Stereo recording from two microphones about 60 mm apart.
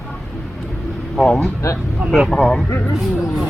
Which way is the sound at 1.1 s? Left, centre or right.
Centre.